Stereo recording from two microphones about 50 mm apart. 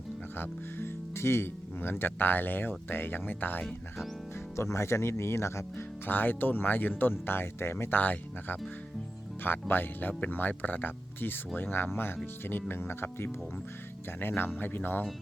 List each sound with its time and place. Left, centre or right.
0.3 s speech: left
4.5 s speech: left
6.1 s speech: left
7.9 s speech: left